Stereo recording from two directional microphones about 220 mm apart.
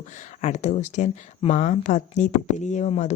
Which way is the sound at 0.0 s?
30° left (ahead or behind).